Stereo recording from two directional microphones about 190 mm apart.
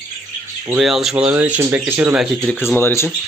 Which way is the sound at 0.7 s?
Centre (ahead or behind).